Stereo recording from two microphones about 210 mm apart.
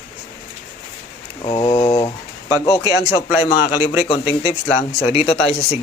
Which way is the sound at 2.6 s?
15° left (ahead or behind).